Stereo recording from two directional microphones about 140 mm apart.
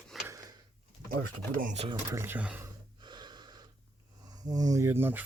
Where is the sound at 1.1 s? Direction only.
80° right.